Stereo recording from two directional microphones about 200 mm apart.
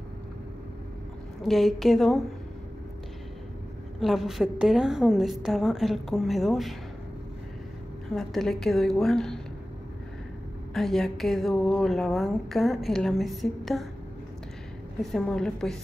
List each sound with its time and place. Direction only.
1.4 s speech: centre (ahead or behind)
4.0 s speech: centre (ahead or behind)
8.1 s speech: centre (ahead or behind)
10.7 s speech: centre (ahead or behind)
15.0 s speech: centre (ahead or behind)